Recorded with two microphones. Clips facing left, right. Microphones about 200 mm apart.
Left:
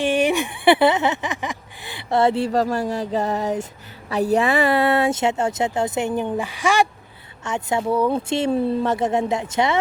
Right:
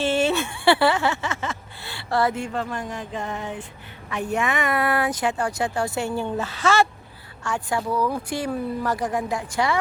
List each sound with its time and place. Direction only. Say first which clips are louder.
0.0 s speech: left 2 dB; 15° left (ahead or behind)